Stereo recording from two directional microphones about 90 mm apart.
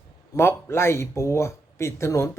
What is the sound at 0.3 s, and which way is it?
Speech, 30° left (ahead or behind).